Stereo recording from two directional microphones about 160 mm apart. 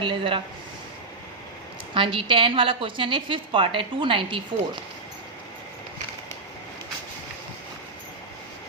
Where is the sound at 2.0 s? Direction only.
30° right (ahead or behind).